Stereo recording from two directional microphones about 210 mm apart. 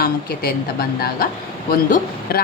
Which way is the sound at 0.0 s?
45° left (ahead or behind).